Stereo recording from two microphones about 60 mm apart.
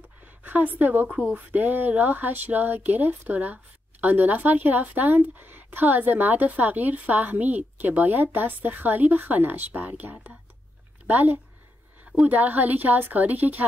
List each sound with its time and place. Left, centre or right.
0.4 s a woman's voice: right